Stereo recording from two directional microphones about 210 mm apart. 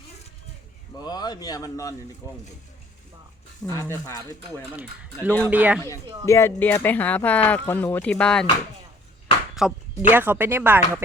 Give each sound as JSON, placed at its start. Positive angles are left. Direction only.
{"t": 0.9, "sound": "speech", "side_deg": 20}
{"t": 3.7, "sound": "speech", "side_deg": 15}
{"t": 5.5, "sound": "speech", "side_deg": -5}
{"t": 6.2, "sound": "speech", "side_deg": 15}
{"t": 9.6, "sound": "speech", "side_deg": -5}